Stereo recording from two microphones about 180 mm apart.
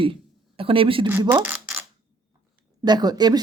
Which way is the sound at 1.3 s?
10° right (ahead or behind).